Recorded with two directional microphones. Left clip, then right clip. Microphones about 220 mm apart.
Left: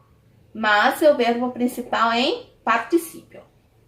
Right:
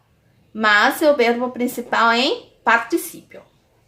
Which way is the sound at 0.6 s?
40° right (ahead or behind).